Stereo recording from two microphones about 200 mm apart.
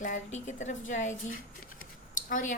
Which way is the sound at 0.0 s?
35° left (ahead or behind).